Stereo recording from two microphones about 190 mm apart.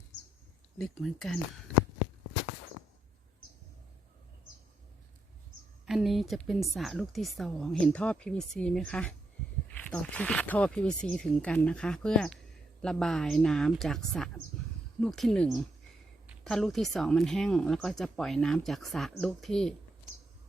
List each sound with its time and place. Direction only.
0.8 s speech: centre (ahead or behind)
5.8 s speech: centre (ahead or behind)